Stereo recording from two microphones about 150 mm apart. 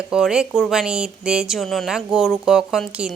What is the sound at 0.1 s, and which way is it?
Speech, 5° right (ahead or behind).